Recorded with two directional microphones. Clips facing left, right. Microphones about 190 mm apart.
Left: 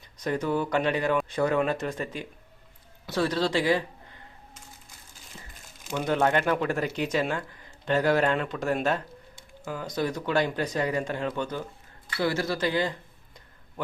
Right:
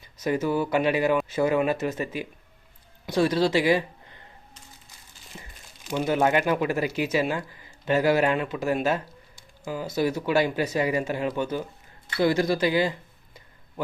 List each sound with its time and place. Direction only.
0.2 s speech: 5° right (ahead or behind)
5.3 s crumpling: 15° right (ahead or behind)
5.9 s speech: 5° right (ahead or behind)
12.0 s speech: 20° right (ahead or behind)